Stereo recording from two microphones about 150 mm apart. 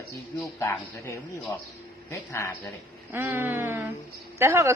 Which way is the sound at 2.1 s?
20° left (ahead or behind).